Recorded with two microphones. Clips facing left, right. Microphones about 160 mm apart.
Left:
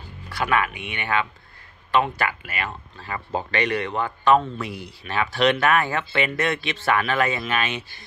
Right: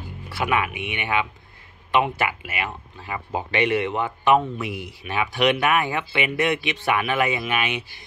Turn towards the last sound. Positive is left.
turn(degrees=-15)  # may be behind; listen again after turning